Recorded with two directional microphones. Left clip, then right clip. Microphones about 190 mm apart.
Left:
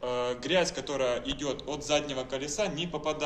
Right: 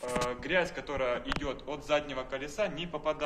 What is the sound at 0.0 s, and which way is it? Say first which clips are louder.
A man's voice: left 2 dB; 20° right (ahead or behind).